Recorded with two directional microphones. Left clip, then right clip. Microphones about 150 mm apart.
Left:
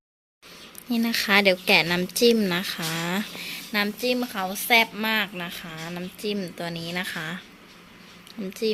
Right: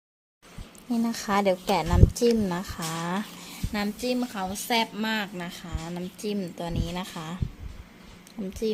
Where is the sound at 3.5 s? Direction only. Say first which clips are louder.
Left 7 dB; centre (ahead or behind).